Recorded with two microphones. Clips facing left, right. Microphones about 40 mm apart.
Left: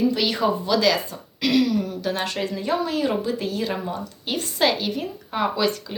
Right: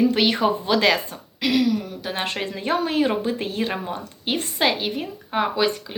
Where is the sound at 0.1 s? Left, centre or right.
Right.